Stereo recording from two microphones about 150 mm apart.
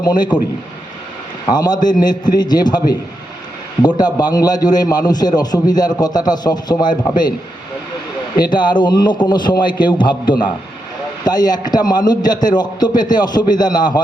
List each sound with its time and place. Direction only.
0.0 s a man's voice: 30° left (ahead or behind)
1.5 s a man's voice: 25° left (ahead or behind)
8.4 s a man's voice: 30° left (ahead or behind)